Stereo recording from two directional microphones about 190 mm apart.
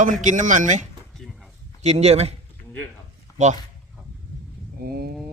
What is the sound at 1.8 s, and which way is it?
Speech, 35° right (ahead or behind).